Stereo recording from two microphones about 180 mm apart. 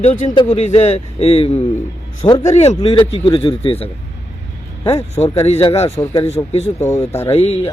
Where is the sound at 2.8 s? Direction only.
25° left (ahead or behind).